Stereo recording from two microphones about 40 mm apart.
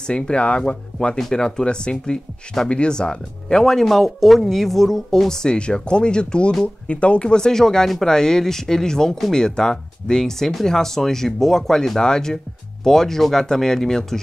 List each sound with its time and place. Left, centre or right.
0.0 s speech: left